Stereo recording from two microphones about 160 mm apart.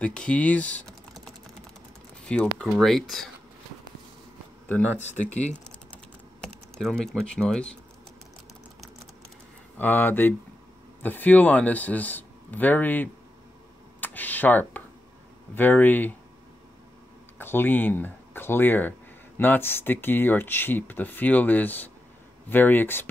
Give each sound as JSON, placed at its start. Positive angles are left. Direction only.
{"t": 0.0, "sound": "speech", "side_deg": 5}
{"t": 2.2, "sound": "speech", "side_deg": 5}
{"t": 4.6, "sound": "speech", "side_deg": 10}
{"t": 5.1, "sound": "speech", "side_deg": 45}
{"t": 6.4, "sound": "speech", "side_deg": 5}
{"t": 9.8, "sound": "speech", "side_deg": 10}
{"t": 14.0, "sound": "a sound", "side_deg": 10}
{"t": 15.5, "sound": "speech", "side_deg": 10}
{"t": 17.4, "sound": "speech", "side_deg": 15}